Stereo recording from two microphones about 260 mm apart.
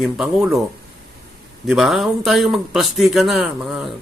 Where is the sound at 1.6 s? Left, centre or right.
Centre.